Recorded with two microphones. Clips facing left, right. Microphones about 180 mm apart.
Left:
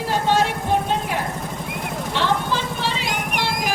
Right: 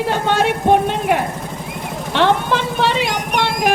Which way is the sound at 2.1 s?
65° right (ahead or behind).